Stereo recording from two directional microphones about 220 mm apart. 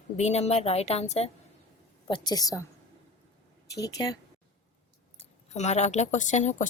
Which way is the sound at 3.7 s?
15° left (ahead or behind).